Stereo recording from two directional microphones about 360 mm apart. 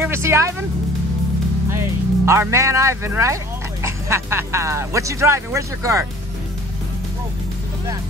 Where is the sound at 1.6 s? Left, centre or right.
Centre.